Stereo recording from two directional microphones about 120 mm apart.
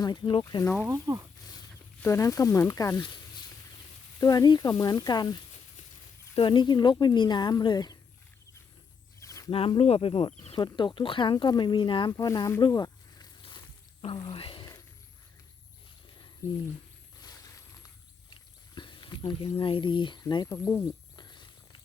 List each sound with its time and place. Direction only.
0.0 s speech: 35° left (ahead or behind)
0.6 s speech: 10° left (ahead or behind)
0.9 s speech: 30° right (ahead or behind)
2.0 s speech: 20° left (ahead or behind)
4.2 s speech: 30° left (ahead or behind)
9.2 s a sound: 30° left (ahead or behind)
9.5 s speech: 50° left (ahead or behind)
12.1 s speech: 30° left (ahead or behind)
14.2 s speech: 45° left (ahead or behind)
16.4 s speech: 25° left (ahead or behind)
17.2 s a sound: 30° left (ahead or behind)
19.5 s speech: 50° left (ahead or behind); by 20.9 s 25° left (ahead or behind)
21.2 s a sound: 40° left (ahead or behind)